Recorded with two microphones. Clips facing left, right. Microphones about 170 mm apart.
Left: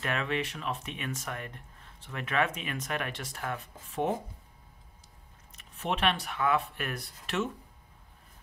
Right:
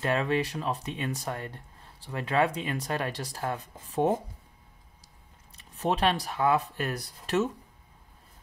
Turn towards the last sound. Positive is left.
turn(degrees=-40)  # may be behind; listen again after turning